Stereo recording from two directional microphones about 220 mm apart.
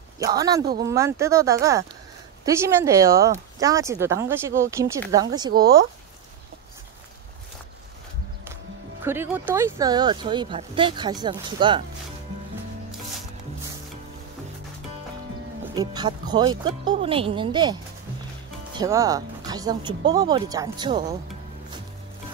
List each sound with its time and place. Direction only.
0.2 s speech: 15° right (ahead or behind)
9.0 s speech: 10° right (ahead or behind)
15.7 s speech: 20° right (ahead or behind)